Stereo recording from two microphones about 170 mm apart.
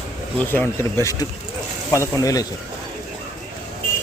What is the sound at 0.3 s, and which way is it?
Speech, 10° left (ahead or behind).